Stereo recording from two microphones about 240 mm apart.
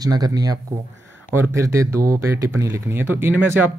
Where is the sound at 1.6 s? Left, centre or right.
Centre.